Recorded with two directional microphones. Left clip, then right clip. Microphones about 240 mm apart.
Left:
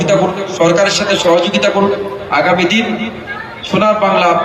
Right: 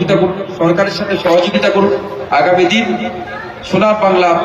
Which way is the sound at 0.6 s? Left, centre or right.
Left.